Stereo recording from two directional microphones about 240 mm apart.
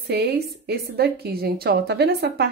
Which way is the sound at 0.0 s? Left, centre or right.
Right.